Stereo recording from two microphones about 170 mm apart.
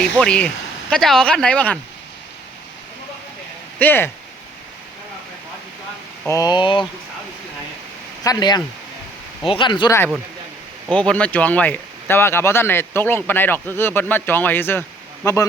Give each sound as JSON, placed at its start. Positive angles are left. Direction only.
{"t": 0.0, "sound": "speech", "side_deg": 5}
{"t": 3.8, "sound": "speech", "side_deg": 10}
{"t": 6.2, "sound": "speech", "side_deg": 20}
{"t": 8.2, "sound": "speech", "side_deg": 25}
{"t": 10.9, "sound": "speech", "side_deg": 5}